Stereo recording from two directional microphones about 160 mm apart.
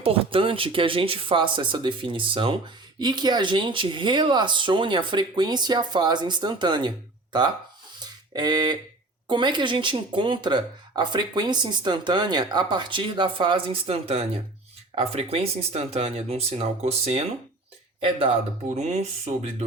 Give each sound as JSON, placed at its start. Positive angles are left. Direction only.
{"t": 0.0, "sound": "speech", "side_deg": -35}
{"t": 7.9, "sound": "a sound", "side_deg": -25}
{"t": 9.2, "sound": "speech", "side_deg": -30}
{"t": 18.8, "sound": "speech", "side_deg": -45}